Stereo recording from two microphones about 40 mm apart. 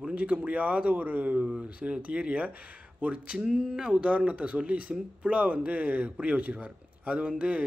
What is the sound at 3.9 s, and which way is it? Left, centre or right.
A man's voice, right.